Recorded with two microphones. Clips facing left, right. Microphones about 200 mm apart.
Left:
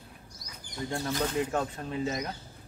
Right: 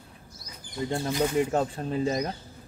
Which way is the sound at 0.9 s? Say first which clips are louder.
Right 4 dB; 15° right (ahead or behind).